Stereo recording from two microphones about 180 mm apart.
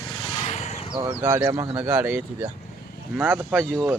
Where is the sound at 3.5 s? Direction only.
Centre (ahead or behind).